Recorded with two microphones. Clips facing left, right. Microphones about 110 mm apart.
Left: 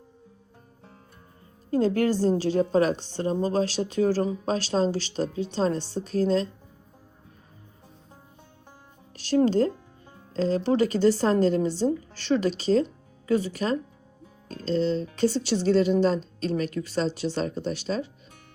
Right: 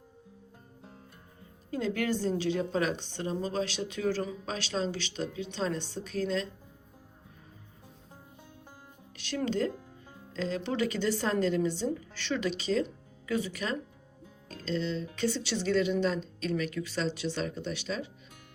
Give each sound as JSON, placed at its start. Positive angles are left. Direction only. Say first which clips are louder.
{"t": 1.7, "sound": "a woman's voice", "louder": "left 8 dB", "side_deg": 40}
{"t": 9.1, "sound": "a woman's voice", "louder": "left 10 dB", "side_deg": 35}